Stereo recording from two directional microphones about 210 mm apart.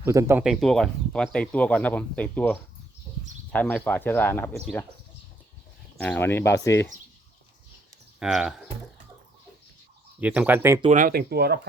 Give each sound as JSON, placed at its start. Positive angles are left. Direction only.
{"t": 0.0, "sound": "speech", "side_deg": -15}
{"t": 6.0, "sound": "speech", "side_deg": 10}
{"t": 8.2, "sound": "speech", "side_deg": 0}
{"t": 10.2, "sound": "speech", "side_deg": -5}
{"t": 10.8, "sound": "speech", "side_deg": -35}